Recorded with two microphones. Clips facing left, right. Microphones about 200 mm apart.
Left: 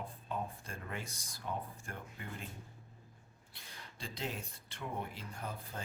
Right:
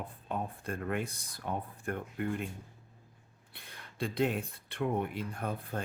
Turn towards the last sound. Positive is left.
turn(degrees=-60)  # may be behind; listen again after turning